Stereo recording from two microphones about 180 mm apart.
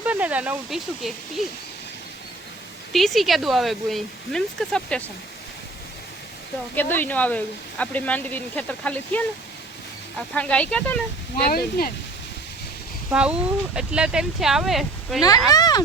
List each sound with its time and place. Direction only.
0.0 s speech: 10° right (ahead or behind)
2.9 s speech: centre (ahead or behind)
6.7 s speech: 10° left (ahead or behind)
11.4 s speech: 55° left (ahead or behind)
13.1 s speech: 5° right (ahead or behind)
15.4 s speech: 20° left (ahead or behind)